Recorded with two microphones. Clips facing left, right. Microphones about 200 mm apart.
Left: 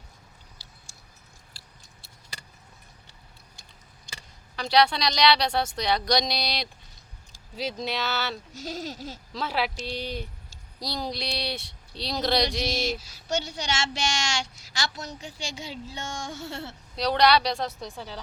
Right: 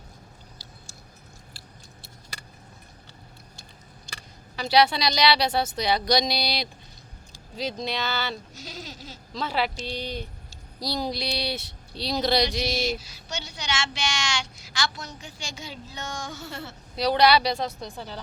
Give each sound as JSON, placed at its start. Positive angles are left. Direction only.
{"t": 0.6, "sound": "a sound", "side_deg": 30}
{"t": 3.6, "sound": "a sound", "side_deg": 15}
{"t": 4.5, "sound": "speech", "side_deg": -5}
{"t": 8.5, "sound": "speech", "side_deg": 45}
{"t": 9.3, "sound": "speech", "side_deg": 5}
{"t": 13.1, "sound": "a woman's voice", "side_deg": 45}
{"t": 16.9, "sound": "speech", "side_deg": -5}